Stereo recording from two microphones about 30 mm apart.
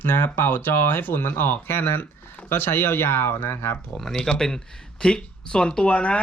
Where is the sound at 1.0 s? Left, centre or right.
Left.